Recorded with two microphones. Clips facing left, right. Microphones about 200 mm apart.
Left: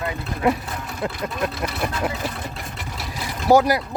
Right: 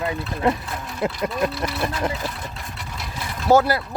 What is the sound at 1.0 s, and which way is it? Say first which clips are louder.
Speech: right 3 dB; 15° right (ahead or behind).